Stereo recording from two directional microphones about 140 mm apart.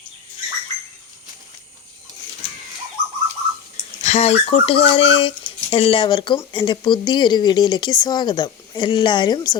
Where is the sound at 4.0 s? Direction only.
50° left (ahead or behind).